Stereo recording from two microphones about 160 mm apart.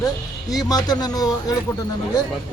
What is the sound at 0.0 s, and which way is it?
Speech, 25° left (ahead or behind).